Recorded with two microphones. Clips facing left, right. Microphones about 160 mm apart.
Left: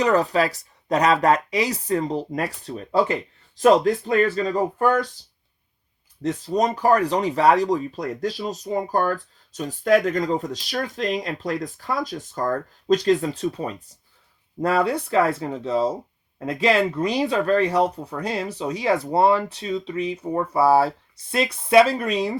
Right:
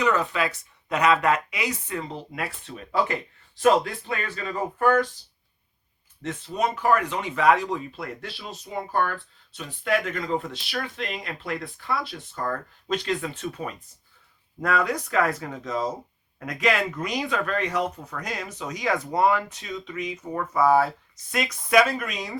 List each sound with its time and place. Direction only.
0.0 s speech: 35° left (ahead or behind)
6.2 s speech: 40° left (ahead or behind)